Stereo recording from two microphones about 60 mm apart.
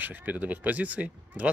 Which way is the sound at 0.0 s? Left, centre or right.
Right.